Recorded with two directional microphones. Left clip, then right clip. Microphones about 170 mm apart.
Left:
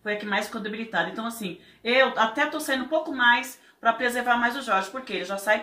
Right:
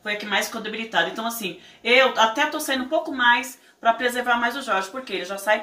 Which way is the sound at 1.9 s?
Centre (ahead or behind).